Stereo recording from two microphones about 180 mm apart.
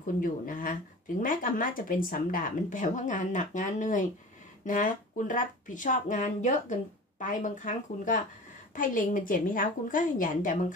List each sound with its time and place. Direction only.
0.0 s speech: 50° left (ahead or behind)